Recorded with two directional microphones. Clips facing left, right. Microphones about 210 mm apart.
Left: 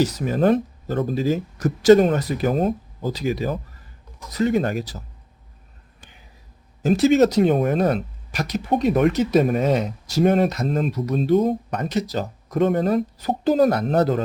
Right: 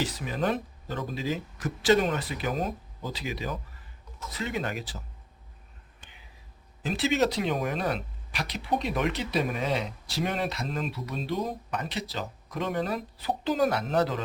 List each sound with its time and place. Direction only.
0.0 s speech: 40° left (ahead or behind)
6.8 s speech: 45° left (ahead or behind)